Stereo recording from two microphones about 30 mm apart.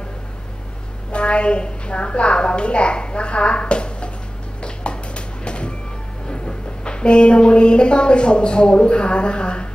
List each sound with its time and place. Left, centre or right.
1.1 s a woman's voice: left
4.6 s music: left
6.2 s speech: left